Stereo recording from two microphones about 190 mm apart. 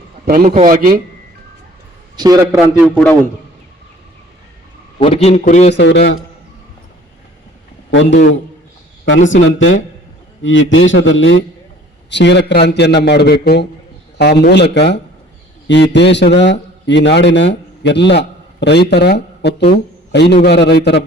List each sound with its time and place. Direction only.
0.3 s a man's voice: 50° right (ahead or behind)
2.1 s a man's voice: 20° right (ahead or behind)
2.8 s a man's voice: 5° left (ahead or behind)
4.9 s a man's voice: 30° left (ahead or behind)
5.7 s a man's voice: 65° left (ahead or behind)
7.9 s a man's voice: 70° left (ahead or behind)
9.3 s a man's voice: 80° left
12.1 s a man's voice: 65° left (ahead or behind)